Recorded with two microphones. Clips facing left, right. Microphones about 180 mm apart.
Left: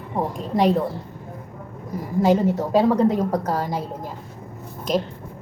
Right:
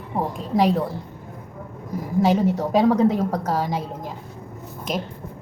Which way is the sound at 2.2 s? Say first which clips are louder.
Left 2 dB; 10° right (ahead or behind).